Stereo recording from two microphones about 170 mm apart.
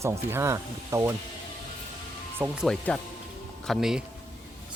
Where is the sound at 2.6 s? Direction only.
5° left (ahead or behind).